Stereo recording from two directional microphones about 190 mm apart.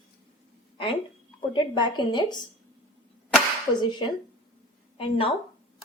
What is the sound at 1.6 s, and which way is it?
Speech, 25° left (ahead or behind).